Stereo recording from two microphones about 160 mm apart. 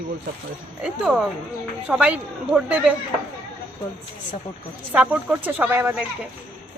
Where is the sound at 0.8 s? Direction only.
5° right (ahead or behind).